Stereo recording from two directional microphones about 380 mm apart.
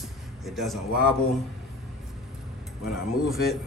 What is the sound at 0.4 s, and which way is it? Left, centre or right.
Speech, centre.